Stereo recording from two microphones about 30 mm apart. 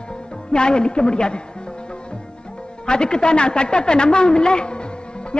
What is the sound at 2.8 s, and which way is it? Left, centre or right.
A woman's voice, left.